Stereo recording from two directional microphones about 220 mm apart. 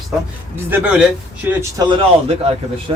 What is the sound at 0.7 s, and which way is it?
Speech, 5° right (ahead or behind).